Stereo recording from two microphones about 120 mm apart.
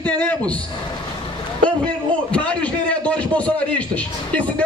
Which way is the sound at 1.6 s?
10° left (ahead or behind).